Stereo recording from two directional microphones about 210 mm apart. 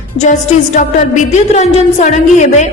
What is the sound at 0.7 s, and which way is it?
A woman's voice, 35° left (ahead or behind).